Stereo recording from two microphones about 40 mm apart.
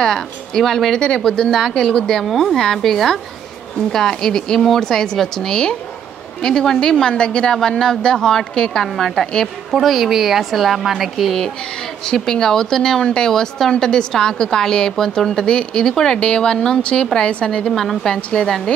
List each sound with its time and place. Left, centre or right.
0.0 s a woman's voice: centre
0.9 s a woman's voice: left
2.2 s a woman's voice: centre
8.8 s a woman's voice: centre
12.1 s a woman's voice: centre
13.3 s a woman's voice: centre